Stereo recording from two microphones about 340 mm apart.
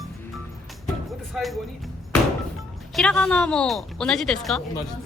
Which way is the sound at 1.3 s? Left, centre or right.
Centre.